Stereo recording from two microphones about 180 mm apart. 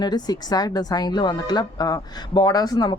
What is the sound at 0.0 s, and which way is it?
Speech, 20° left (ahead or behind).